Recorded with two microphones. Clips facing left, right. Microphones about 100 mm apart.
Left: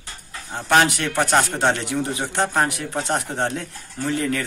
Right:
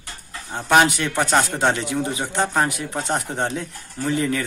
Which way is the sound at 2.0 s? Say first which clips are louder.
Even; 10° right (ahead or behind).